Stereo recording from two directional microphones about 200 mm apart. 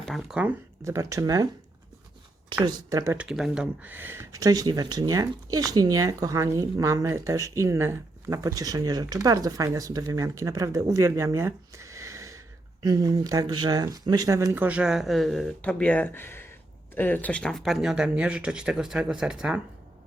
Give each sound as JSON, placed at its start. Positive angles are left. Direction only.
{"t": 0.0, "sound": "speech", "side_deg": 0}
{"t": 2.6, "sound": "speech", "side_deg": -20}